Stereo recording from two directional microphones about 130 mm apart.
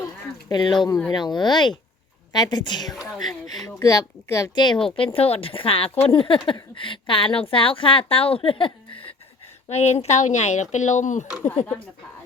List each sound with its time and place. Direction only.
0.5 s speech: 35° left (ahead or behind)
2.9 s speech: centre (ahead or behind)
3.8 s speech: 25° left (ahead or behind)
4.9 s speech: 45° left (ahead or behind)
9.6 s speech: 60° left (ahead or behind)